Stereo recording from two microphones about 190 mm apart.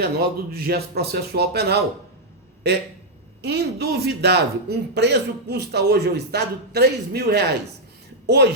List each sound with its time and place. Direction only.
0.0 s speech: 55° right (ahead or behind)